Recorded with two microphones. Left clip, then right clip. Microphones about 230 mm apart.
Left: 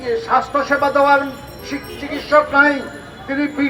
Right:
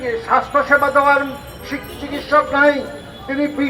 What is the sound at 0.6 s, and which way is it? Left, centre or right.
Speech, left.